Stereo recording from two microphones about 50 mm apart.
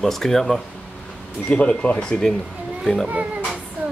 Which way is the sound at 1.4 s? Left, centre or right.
Centre.